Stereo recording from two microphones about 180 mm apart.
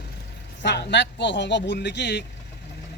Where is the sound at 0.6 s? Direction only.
75° left (ahead or behind).